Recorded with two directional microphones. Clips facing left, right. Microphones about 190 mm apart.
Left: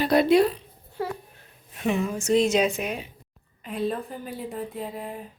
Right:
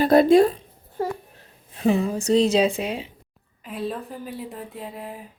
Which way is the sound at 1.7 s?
35° right (ahead or behind).